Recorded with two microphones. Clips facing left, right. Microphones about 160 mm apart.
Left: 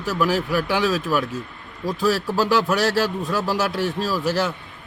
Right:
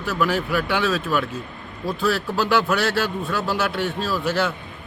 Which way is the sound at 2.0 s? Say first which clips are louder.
Left 2 dB; 40° left (ahead or behind).